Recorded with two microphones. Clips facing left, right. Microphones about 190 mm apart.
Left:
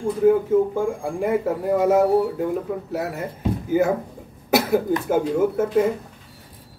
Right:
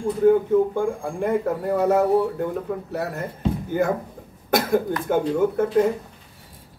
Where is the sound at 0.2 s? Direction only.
5° left (ahead or behind).